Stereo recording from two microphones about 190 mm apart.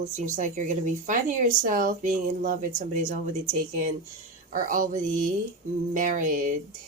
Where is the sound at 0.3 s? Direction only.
40° right (ahead or behind).